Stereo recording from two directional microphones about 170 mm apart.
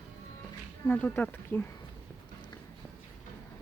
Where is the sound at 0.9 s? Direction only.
10° left (ahead or behind).